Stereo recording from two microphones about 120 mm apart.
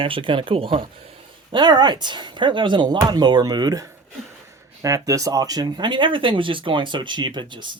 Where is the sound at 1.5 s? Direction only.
35° right (ahead or behind).